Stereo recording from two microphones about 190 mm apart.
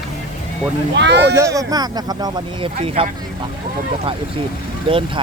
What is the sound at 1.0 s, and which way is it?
Speech, 65° right (ahead or behind).